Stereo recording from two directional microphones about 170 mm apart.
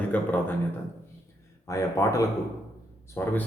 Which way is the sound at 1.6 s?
20° left (ahead or behind).